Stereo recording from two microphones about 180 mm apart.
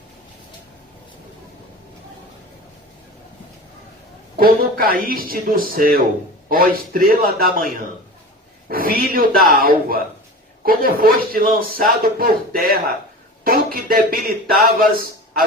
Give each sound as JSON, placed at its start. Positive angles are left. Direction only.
{"t": 4.4, "sound": "speech", "side_deg": -55}
{"t": 8.7, "sound": "a man's voice", "side_deg": -55}